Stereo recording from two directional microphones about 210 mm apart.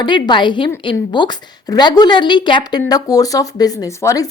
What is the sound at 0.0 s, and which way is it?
A woman's voice, 20° left (ahead or behind).